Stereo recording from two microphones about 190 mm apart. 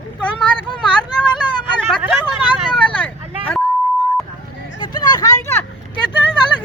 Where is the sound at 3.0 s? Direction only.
10° left (ahead or behind).